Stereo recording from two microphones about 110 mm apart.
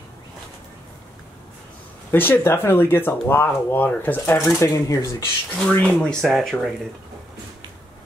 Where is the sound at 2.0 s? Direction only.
20° left (ahead or behind).